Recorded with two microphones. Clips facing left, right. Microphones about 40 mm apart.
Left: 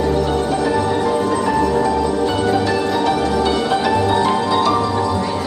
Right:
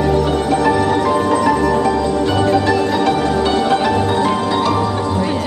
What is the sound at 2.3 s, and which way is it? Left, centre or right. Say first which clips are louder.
Music: right 3 dB; right.